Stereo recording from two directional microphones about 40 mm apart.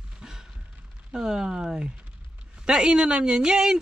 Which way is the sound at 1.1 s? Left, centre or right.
Centre.